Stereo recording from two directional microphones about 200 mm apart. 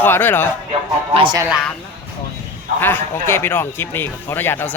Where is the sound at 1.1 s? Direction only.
25° right (ahead or behind).